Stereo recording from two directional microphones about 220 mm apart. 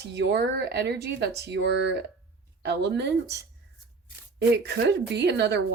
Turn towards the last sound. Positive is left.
turn(degrees=-50)  # may be behind; listen again after turning